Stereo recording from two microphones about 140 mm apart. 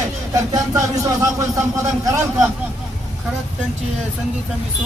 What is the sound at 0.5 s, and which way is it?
Speech, 20° right (ahead or behind).